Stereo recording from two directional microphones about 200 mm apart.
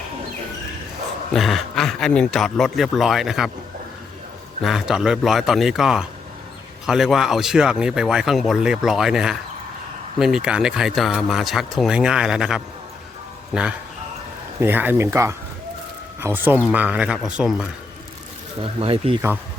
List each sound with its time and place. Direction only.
1.3 s speech: centre (ahead or behind)
4.6 s speech: centre (ahead or behind)
18.6 s speech: 30° right (ahead or behind)